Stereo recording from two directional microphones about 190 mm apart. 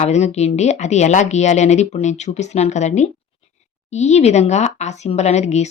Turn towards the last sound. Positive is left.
turn(degrees=35)  # may be behind; listen again after turning